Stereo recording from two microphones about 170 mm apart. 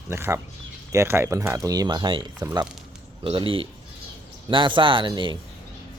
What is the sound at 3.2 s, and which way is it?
Speech, 30° right (ahead or behind).